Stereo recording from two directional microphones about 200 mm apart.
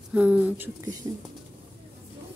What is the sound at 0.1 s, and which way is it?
Speech, 5° right (ahead or behind).